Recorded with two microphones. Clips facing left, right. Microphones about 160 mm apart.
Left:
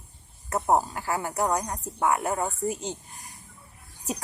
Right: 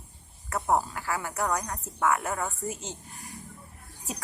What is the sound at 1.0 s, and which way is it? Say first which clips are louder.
A woman's voice: left 3 dB; 35° left (ahead or behind).